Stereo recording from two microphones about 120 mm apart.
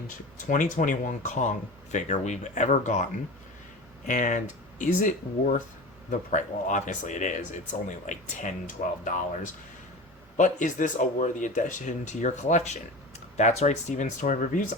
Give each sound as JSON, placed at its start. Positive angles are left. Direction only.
{"t": 0.4, "sound": "speech", "side_deg": 90}
{"t": 10.3, "sound": "speech", "side_deg": 90}
{"t": 13.3, "sound": "speech", "side_deg": 65}